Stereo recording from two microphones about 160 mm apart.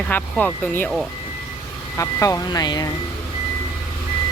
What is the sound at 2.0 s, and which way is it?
Speech, 20° left (ahead or behind).